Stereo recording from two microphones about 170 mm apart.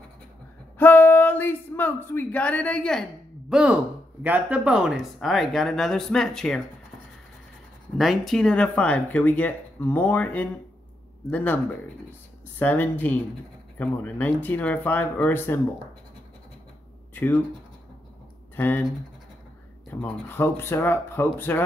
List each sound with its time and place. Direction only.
0.7 s speech: 10° left (ahead or behind)
8.0 s speech: centre (ahead or behind)
17.1 s speech: 10° left (ahead or behind)
19.9 s speech: 10° left (ahead or behind)